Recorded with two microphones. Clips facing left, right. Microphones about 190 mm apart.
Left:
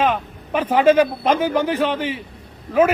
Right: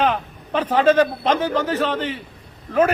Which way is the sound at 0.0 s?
10° left (ahead or behind).